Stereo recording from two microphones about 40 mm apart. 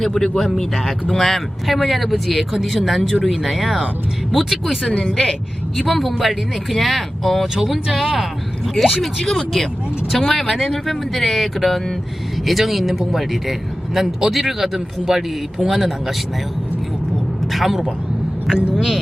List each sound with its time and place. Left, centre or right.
0.0 s speech: centre
3.4 s a man's voice: centre
4.8 s a woman's voice: left
5.7 s speech: centre
7.4 s a man's voice: centre
17.5 s a man's voice: centre
18.5 s speech: right